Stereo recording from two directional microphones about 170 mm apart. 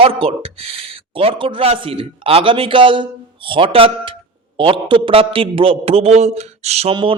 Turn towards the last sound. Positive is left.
turn(degrees=-35)  # may be behind; listen again after turning